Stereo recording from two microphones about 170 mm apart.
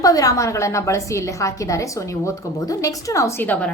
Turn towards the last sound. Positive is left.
turn(degrees=10)  # may be behind; listen again after turning